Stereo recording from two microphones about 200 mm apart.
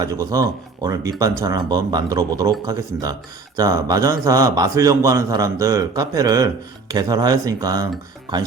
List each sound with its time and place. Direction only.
0.0 s speech: 15° right (ahead or behind)